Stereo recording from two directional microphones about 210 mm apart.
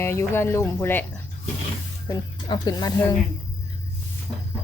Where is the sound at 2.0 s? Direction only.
20° left (ahead or behind).